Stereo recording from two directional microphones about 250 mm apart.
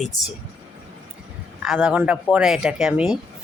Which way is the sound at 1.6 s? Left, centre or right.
Centre.